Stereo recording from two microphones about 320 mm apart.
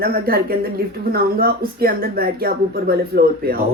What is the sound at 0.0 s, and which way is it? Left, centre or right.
Speech, right.